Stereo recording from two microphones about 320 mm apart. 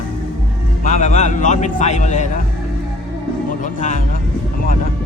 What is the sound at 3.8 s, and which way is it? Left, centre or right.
Speech, left.